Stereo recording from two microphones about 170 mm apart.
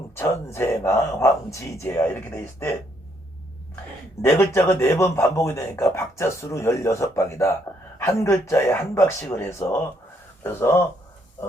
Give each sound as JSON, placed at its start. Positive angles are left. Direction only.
{"t": 0.2, "sound": "a man's voice", "side_deg": 15}
{"t": 4.2, "sound": "a man's voice", "side_deg": 15}